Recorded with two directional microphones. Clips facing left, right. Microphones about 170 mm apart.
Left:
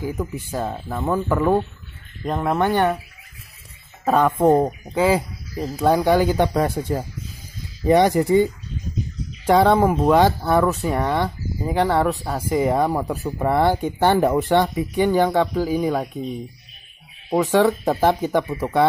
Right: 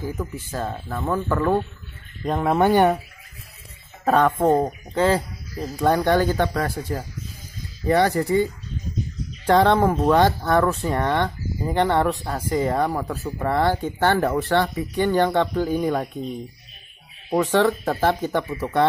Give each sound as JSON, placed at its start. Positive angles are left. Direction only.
{"t": 0.0, "sound": "speech", "side_deg": 15}
{"t": 2.2, "sound": "speech", "side_deg": 0}
{"t": 4.0, "sound": "speech", "side_deg": 5}
{"t": 9.5, "sound": "speech", "side_deg": 10}
{"t": 17.3, "sound": "speech", "side_deg": 10}